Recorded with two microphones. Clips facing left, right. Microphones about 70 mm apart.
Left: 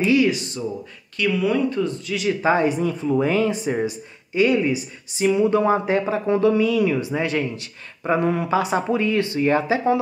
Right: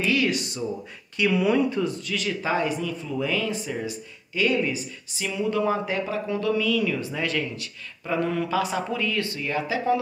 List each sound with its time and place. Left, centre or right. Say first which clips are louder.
0.0 s speech: left 6 dB; centre
0.3 s speech: left 2 dB; centre
1.1 s speech: left 1 dB; centre
2.0 s a man's voice: left 6 dB; centre
2.4 s speech: left 7 dB; left
3.8 s speech: left 7 dB; left
6.5 s speech: left 5 dB; left
9.4 s speech: left 8 dB; left